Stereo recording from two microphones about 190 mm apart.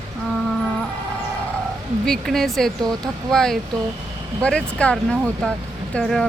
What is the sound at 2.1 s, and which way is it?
Speech, centre (ahead or behind).